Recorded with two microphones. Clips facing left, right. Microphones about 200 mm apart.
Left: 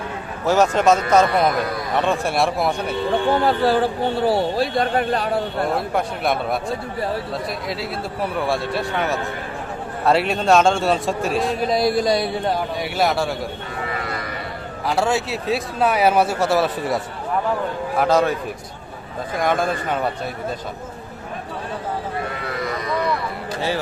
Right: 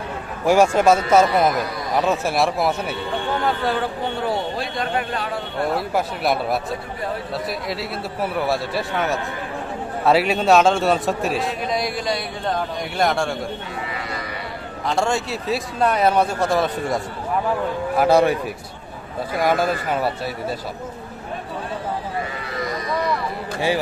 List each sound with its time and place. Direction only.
0.4 s a man's voice: 10° right (ahead or behind)
3.3 s a man's voice: 35° left (ahead or behind)
5.7 s a man's voice: 5° right (ahead or behind)
11.6 s a man's voice: 35° left (ahead or behind)
12.5 s a man's voice: 5° left (ahead or behind)
13.9 s livestock: 50° left (ahead or behind)
14.8 s a man's voice: 5° left (ahead or behind)
18.0 s a man's voice: 15° right (ahead or behind)
19.4 s a man's voice: 5° right (ahead or behind)
23.6 s a man's voice: 15° right (ahead or behind)